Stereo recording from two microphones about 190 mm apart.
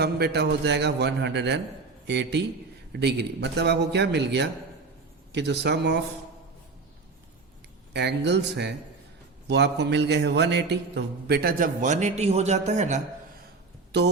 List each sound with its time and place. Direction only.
0.0 s a man's voice: 60° right (ahead or behind)
7.9 s a man's voice: 65° right (ahead or behind); by 13.0 s 35° right (ahead or behind)
13.9 s a man's voice: 60° right (ahead or behind)